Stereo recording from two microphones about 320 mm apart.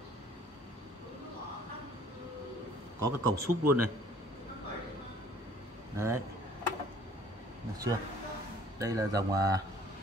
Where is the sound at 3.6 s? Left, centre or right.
Right.